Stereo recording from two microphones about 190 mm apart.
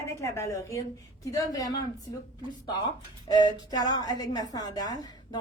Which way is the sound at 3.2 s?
20° left (ahead or behind).